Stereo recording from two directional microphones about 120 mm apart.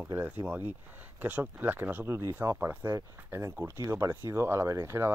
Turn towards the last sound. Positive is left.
turn(degrees=-20)  # may be behind; listen again after turning